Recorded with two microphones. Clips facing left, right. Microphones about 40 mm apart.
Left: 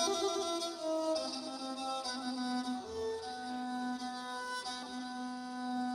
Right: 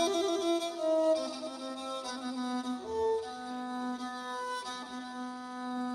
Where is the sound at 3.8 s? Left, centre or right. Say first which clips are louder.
Right 2 dB; right.